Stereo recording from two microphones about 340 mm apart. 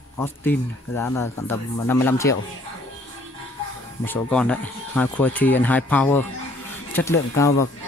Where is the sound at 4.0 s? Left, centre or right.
Centre.